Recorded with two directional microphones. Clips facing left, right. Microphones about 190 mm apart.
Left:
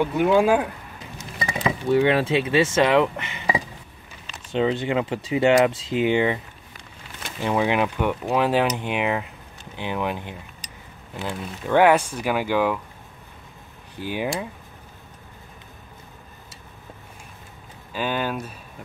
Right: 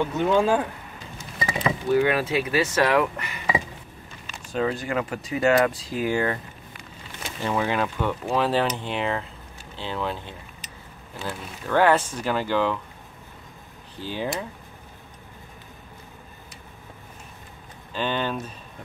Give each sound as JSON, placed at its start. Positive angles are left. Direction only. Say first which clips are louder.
{"t": 0.0, "sound": "speech", "louder": "left 3 dB", "side_deg": 10}
{"t": 1.9, "sound": "speech", "louder": "left 3 dB", "side_deg": 25}
{"t": 7.4, "sound": "speech", "louder": "left 3 dB", "side_deg": 15}
{"t": 13.9, "sound": "speech", "louder": "left 2 dB", "side_deg": 15}
{"t": 17.9, "sound": "speech", "louder": "left 1 dB", "side_deg": 10}